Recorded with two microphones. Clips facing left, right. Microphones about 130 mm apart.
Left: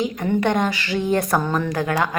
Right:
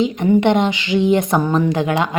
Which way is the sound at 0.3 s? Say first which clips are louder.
Right 4 dB; 20° right (ahead or behind).